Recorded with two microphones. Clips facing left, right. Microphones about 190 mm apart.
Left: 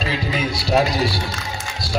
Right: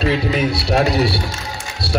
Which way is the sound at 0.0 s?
65° right (ahead or behind).